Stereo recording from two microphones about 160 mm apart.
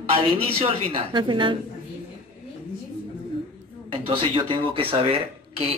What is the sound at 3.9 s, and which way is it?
Speech, 35° right (ahead or behind).